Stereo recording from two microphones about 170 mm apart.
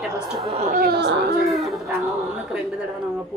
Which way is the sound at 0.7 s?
65° right (ahead or behind).